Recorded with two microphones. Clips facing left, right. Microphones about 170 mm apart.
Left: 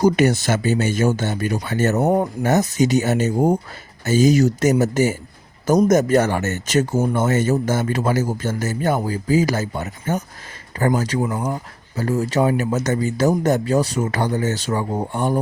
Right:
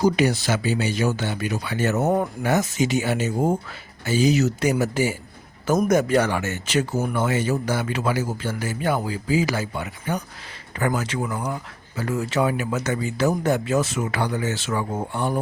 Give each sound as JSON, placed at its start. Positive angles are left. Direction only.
{"t": 0.0, "sound": "a man's voice", "side_deg": 50}
{"t": 2.0, "sound": "speech", "side_deg": 20}
{"t": 2.4, "sound": "a man's voice", "side_deg": 40}
{"t": 6.9, "sound": "speech", "side_deg": 20}
{"t": 7.3, "sound": "a man's voice", "side_deg": 45}
{"t": 11.2, "sound": "speech", "side_deg": 20}
{"t": 11.9, "sound": "speech", "side_deg": 40}